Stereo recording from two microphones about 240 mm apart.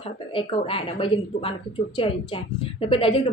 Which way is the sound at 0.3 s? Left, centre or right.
Left.